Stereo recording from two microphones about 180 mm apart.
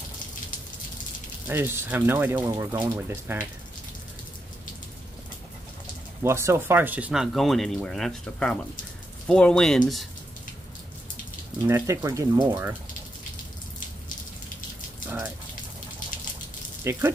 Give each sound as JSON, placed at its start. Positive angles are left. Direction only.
{"t": 1.5, "sound": "speech", "side_deg": -15}
{"t": 6.2, "sound": "speech", "side_deg": -15}
{"t": 11.6, "sound": "speech", "side_deg": -15}
{"t": 15.0, "sound": "raindrop", "side_deg": -10}
{"t": 16.9, "sound": "speech", "side_deg": -15}